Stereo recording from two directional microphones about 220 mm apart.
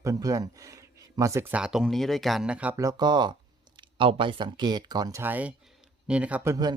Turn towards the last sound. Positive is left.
turn(degrees=-15)  # may be behind; listen again after turning